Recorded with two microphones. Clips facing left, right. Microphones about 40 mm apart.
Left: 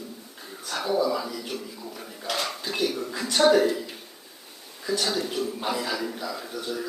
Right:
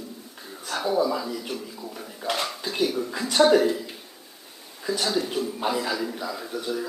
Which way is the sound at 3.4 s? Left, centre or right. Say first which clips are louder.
Right 1 dB; centre.